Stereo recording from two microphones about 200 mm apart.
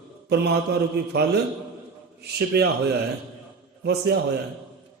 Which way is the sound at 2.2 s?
55° right (ahead or behind).